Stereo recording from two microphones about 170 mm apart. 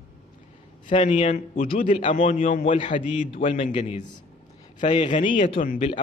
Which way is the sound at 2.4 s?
55° left (ahead or behind).